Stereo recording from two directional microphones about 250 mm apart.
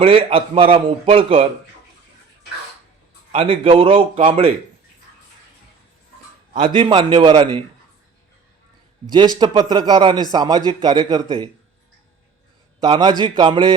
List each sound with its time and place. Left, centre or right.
0.0 s a man's voice: right
3.3 s a man's voice: right
6.7 s a man's voice: centre
9.4 s a man's voice: centre
12.8 s a man's voice: centre